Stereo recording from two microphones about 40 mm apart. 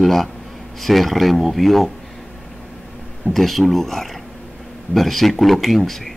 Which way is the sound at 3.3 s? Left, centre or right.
Centre.